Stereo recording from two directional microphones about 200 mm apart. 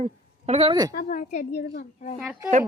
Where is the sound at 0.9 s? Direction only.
45° left (ahead or behind).